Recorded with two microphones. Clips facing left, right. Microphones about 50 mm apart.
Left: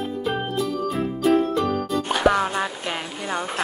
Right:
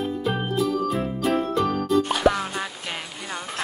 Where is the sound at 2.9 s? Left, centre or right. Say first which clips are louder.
Left 5 dB; centre.